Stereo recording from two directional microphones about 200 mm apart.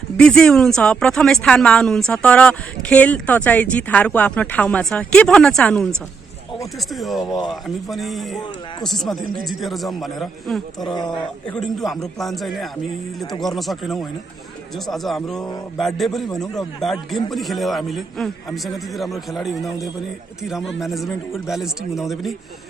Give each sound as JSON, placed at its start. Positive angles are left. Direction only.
{"t": 0.2, "sound": "a woman's voice", "side_deg": 5}
{"t": 10.8, "sound": "speech", "side_deg": 20}
{"t": 11.4, "sound": "a woman's voice", "side_deg": 5}